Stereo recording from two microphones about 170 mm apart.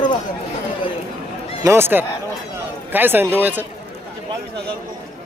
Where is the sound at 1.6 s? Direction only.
15° right (ahead or behind).